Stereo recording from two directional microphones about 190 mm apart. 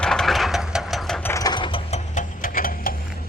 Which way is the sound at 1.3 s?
20° left (ahead or behind).